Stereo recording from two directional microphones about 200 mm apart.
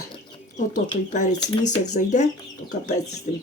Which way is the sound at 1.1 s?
40° left (ahead or behind).